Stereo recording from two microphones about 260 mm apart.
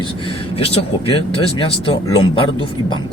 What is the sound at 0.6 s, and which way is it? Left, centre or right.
Speech, left.